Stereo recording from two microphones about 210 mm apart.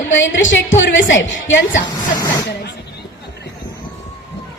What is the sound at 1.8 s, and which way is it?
Speech, 20° left (ahead or behind).